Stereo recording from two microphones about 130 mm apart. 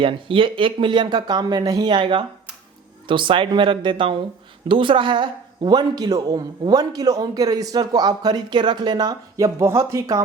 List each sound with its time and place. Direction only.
0.0 s a man's voice: 40° right (ahead or behind); by 10.2 s 25° right (ahead or behind)